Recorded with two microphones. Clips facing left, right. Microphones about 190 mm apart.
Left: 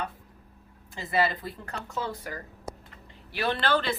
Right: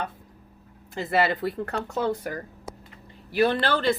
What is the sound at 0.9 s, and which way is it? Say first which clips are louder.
Speech: right 3 dB; 65° right (ahead or behind).